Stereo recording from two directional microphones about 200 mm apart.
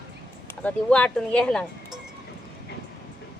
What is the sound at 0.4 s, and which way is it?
Speech, 5° left (ahead or behind).